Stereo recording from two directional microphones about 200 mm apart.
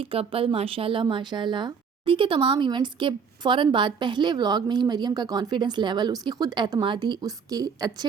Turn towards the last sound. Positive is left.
turn(degrees=-20)  # may be behind; listen again after turning